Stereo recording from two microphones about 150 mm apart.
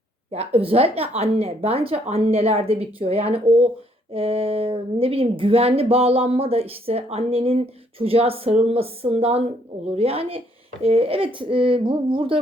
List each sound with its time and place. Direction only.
0.3 s speech: 40° right (ahead or behind)